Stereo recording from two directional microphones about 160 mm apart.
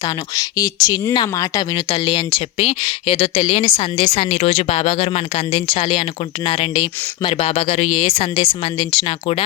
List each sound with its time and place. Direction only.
0.3 s speech: 20° left (ahead or behind)